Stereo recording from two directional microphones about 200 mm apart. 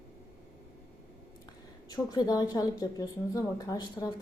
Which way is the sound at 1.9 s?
20° left (ahead or behind).